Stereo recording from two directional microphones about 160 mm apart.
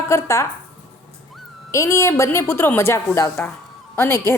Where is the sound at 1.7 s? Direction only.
20° left (ahead or behind).